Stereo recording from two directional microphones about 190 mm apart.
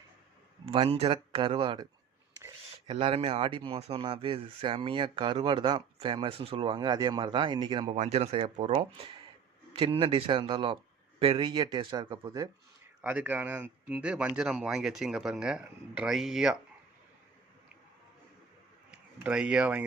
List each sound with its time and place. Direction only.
0.6 s speech: 30° right (ahead or behind)
7.9 s speech: 40° right (ahead or behind); by 12.5 s 20° right (ahead or behind)
13.0 s speech: 10° right (ahead or behind)
18.9 s speech: 5° right (ahead or behind)